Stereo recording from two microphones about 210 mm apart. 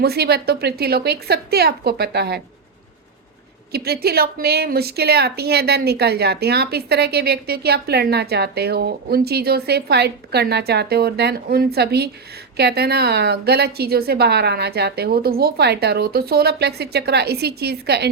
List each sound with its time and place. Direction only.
0.0 s a woman's voice: 50° right (ahead or behind)
3.7 s a woman's voice: 50° right (ahead or behind)